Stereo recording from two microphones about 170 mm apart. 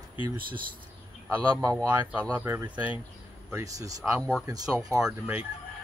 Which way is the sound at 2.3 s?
15° right (ahead or behind).